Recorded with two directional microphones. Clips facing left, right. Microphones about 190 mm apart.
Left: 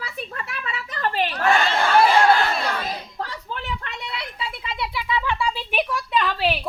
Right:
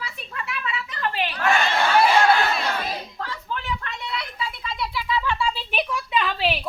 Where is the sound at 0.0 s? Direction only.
40° left (ahead or behind).